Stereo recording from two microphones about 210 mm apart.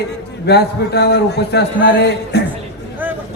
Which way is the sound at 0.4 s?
50° left (ahead or behind).